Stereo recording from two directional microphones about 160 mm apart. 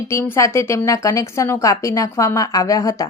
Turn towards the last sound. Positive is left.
turn(degrees=20)  # may be behind; listen again after turning